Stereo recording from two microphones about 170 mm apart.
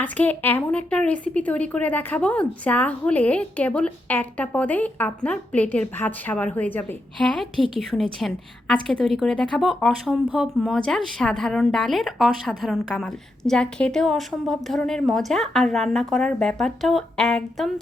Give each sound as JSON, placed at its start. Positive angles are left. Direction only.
{"t": 0.0, "sound": "a woman's voice", "side_deg": 10}